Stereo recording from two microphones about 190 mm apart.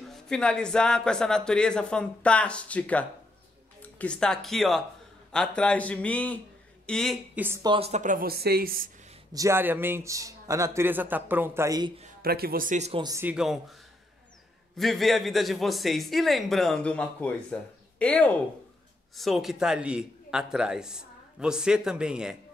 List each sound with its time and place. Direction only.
0.1 s a man's voice: 5° left (ahead or behind)
7.3 s a man's voice: 15° right (ahead or behind)
7.7 s a woman's voice: 35° right (ahead or behind); by 8.8 s 50° right (ahead or behind)
9.3 s a man's voice: 15° right (ahead or behind)
12.2 s a woman's voice: 55° right (ahead or behind); by 13.0 s 35° right (ahead or behind)
13.0 s a man's voice: 15° right (ahead or behind)
13.3 s speech: centre (ahead or behind)
14.8 s speech: centre (ahead or behind)